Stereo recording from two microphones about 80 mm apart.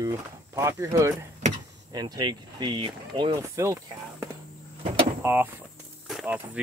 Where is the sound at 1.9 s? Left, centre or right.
Right.